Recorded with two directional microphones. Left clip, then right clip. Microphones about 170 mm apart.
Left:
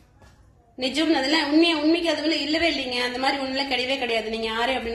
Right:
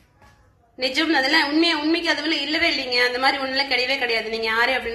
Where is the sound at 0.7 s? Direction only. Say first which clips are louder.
Right 2 dB; 5° left (ahead or behind).